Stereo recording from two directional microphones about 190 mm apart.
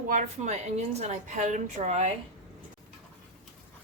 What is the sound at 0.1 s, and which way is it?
A woman's voice, 40° right (ahead or behind).